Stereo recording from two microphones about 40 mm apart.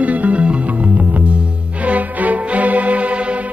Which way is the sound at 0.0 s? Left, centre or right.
Right.